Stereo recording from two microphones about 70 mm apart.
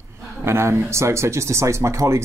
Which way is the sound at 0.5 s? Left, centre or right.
Right.